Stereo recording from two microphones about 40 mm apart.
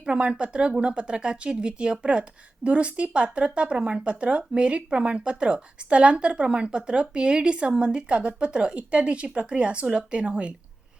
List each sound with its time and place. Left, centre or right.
0.0 s speech: right